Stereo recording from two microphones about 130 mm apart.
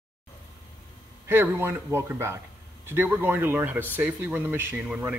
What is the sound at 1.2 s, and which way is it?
A man's voice, 20° right (ahead or behind).